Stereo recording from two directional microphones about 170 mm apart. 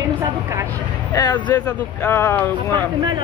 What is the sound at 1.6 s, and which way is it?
Speech, 10° left (ahead or behind).